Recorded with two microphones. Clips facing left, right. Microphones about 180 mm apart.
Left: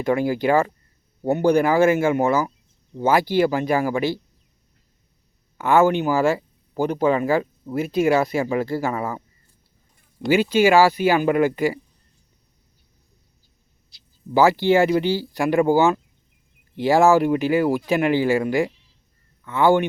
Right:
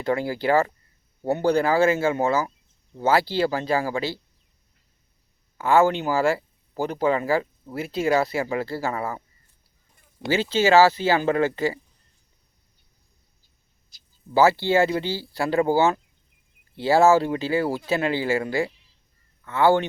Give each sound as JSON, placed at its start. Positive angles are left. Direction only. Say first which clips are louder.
{"t": 0.0, "sound": "speech", "louder": "left 4 dB", "side_deg": 15}
{"t": 5.5, "sound": "speech", "louder": "left 2 dB", "side_deg": 20}
{"t": 10.2, "sound": "speech", "louder": "left 4 dB", "side_deg": 15}
{"t": 14.3, "sound": "speech", "louder": "left 2 dB", "side_deg": 15}